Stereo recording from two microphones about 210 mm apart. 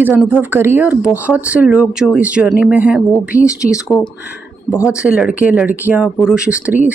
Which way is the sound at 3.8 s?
15° left (ahead or behind).